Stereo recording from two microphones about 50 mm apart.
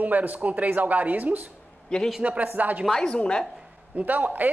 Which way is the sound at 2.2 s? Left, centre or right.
Right.